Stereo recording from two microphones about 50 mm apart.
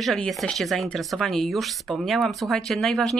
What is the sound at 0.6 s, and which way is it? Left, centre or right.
Speech, centre.